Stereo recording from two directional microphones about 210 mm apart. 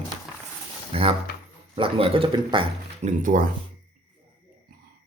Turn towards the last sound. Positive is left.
turn(degrees=-40)  # may be behind; listen again after turning